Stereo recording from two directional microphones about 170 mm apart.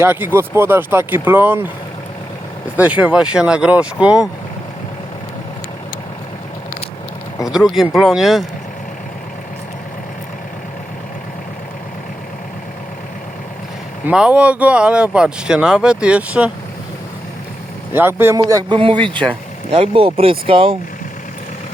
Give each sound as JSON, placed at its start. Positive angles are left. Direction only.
{"t": 0.0, "sound": "speech", "side_deg": -10}
{"t": 2.7, "sound": "speech", "side_deg": -10}
{"t": 7.5, "sound": "speech", "side_deg": 0}
{"t": 14.1, "sound": "speech", "side_deg": -5}
{"t": 17.9, "sound": "speech", "side_deg": -15}
{"t": 19.7, "sound": "speech", "side_deg": -35}